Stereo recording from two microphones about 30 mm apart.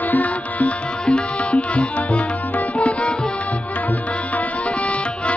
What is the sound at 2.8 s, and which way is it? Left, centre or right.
Tabla, left.